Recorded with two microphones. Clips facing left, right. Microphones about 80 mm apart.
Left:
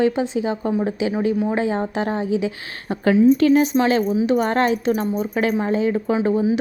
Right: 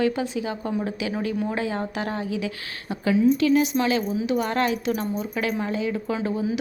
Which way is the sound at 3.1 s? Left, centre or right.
Left.